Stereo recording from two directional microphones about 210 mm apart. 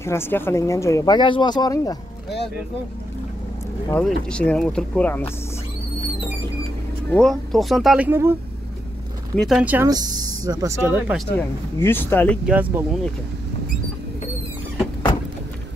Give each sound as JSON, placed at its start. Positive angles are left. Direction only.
{"t": 0.0, "sound": "speech", "side_deg": 10}
{"t": 3.9, "sound": "speech", "side_deg": 5}
{"t": 7.2, "sound": "speech", "side_deg": 0}
{"t": 9.3, "sound": "speech", "side_deg": 0}
{"t": 9.8, "sound": "speech", "side_deg": -20}
{"t": 11.3, "sound": "speech", "side_deg": 10}
{"t": 12.4, "sound": "speech", "side_deg": -5}